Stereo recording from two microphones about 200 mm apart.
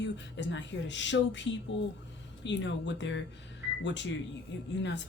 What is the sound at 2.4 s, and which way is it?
Speech, 65° left (ahead or behind).